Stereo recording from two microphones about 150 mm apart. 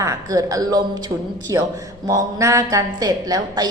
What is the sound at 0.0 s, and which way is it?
A woman's voice, 20° right (ahead or behind).